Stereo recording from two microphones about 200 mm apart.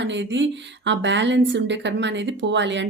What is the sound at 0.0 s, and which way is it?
Speech, 65° right (ahead or behind).